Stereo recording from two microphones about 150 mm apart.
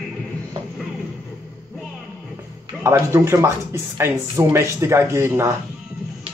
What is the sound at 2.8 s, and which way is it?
Speech, 15° right (ahead or behind).